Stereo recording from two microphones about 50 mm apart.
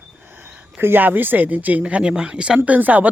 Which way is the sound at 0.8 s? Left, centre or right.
Right.